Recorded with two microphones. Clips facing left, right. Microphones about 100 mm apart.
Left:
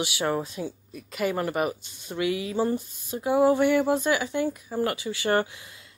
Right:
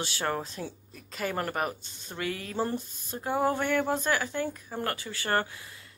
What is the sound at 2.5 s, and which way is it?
Speech, centre (ahead or behind).